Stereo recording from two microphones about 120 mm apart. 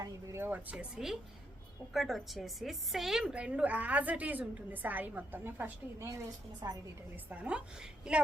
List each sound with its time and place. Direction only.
0.0 s a woman's voice: 25° right (ahead or behind)
6.6 s a woman's voice: 35° right (ahead or behind)
7.3 s a woman's voice: 10° right (ahead or behind)